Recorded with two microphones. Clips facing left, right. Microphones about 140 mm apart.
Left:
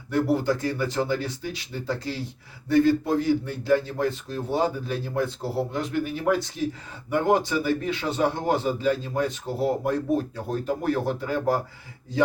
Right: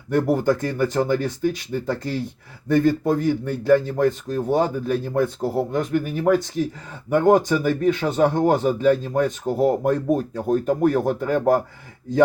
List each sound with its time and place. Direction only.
0.1 s speech: 45° right (ahead or behind)